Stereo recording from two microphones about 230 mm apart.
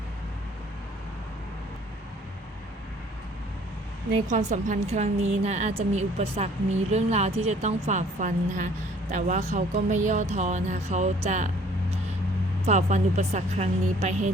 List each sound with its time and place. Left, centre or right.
4.3 s speech: right
12.6 s speech: right